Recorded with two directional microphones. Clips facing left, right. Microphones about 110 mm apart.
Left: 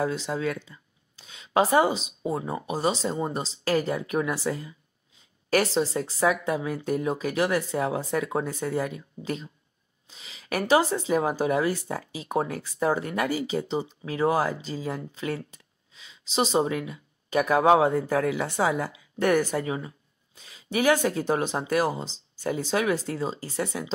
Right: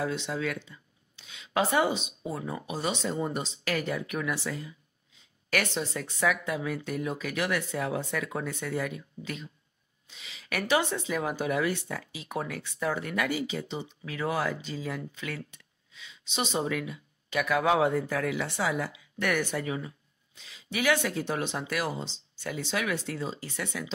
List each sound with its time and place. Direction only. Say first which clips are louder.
0.0 s speech: left 4 dB; 40° left (ahead or behind)